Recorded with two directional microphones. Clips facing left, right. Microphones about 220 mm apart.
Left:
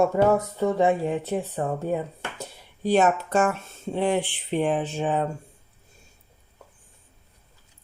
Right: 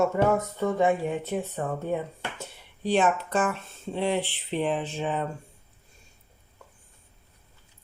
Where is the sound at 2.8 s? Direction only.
45° left (ahead or behind).